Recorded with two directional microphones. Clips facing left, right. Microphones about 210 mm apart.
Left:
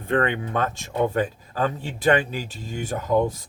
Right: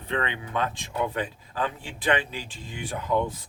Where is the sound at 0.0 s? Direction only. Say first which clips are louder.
Left 7 dB; 50° left (ahead or behind).